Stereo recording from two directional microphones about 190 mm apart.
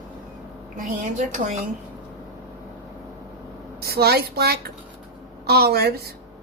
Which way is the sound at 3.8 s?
55° right (ahead or behind).